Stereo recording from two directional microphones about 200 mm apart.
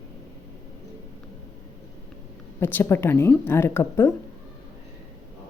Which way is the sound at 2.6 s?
10° left (ahead or behind).